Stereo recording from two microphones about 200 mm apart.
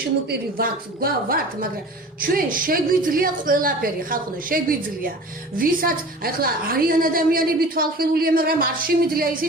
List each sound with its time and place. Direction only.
0.3 s a woman's voice: 45° right (ahead or behind)